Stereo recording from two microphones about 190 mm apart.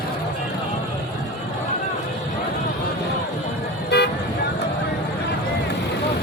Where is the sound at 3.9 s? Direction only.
60° left (ahead or behind).